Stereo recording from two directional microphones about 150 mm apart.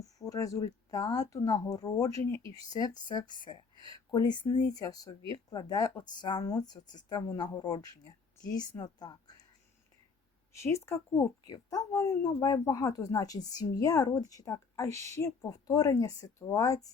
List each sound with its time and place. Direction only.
0.0 s speech: 25° left (ahead or behind)
10.5 s speech: 20° left (ahead or behind)